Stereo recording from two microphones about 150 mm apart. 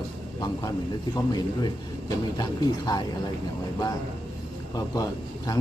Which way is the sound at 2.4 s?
25° left (ahead or behind).